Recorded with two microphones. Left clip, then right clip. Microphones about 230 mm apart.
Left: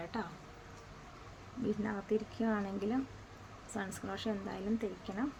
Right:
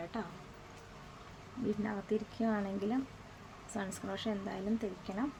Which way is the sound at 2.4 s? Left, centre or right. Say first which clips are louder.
Right 1 dB; centre.